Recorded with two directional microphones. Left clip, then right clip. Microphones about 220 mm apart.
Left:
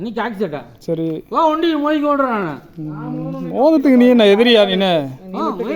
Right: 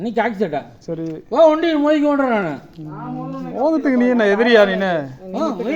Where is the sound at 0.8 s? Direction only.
45° left (ahead or behind).